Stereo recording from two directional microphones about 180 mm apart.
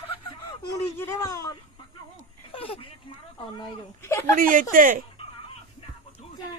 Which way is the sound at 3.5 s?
25° left (ahead or behind).